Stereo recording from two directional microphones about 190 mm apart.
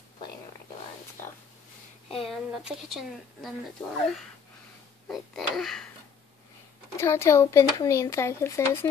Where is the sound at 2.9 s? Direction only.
Centre (ahead or behind).